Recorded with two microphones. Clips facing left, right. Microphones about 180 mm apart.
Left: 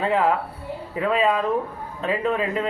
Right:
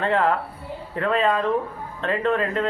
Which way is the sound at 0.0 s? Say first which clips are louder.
Even; 5° left (ahead or behind).